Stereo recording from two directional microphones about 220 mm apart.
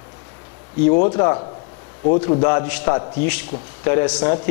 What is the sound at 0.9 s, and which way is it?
Speech, 30° left (ahead or behind).